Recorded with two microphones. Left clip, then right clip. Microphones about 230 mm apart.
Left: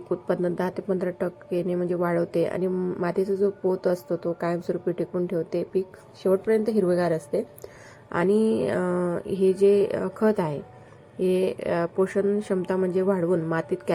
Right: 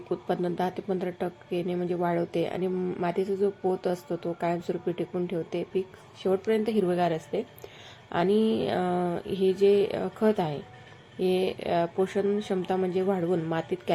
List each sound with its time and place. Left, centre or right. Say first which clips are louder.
0.1 s a woman's voice: left 3 dB; centre
9.2 s speech: left 3 dB; left
9.5 s a woman's voice: left 3 dB; centre